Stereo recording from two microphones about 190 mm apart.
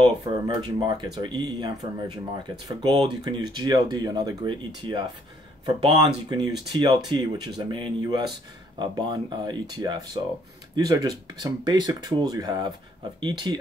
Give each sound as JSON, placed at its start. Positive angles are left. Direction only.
{"t": 0.0, "sound": "speech", "side_deg": -25}